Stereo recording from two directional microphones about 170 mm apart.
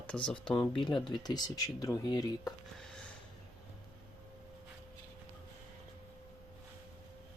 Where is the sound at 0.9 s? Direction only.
25° left (ahead or behind).